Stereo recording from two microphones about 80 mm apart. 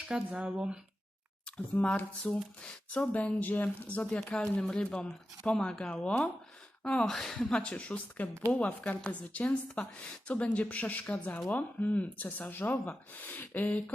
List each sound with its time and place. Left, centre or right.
0.1 s speech: centre
1.8 s speech: centre